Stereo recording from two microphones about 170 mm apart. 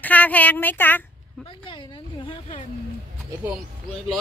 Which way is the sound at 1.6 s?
30° left (ahead or behind).